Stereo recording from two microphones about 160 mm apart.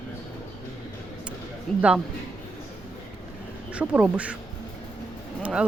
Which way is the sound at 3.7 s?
10° right (ahead or behind).